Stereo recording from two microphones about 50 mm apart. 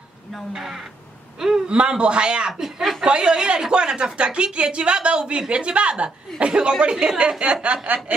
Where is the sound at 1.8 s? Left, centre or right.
Right.